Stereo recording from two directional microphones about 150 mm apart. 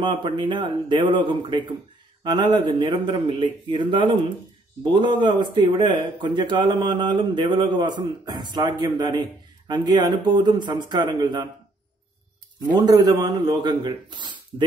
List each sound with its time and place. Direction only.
0.0 s speech: 30° right (ahead or behind)
12.7 s speech: 25° right (ahead or behind)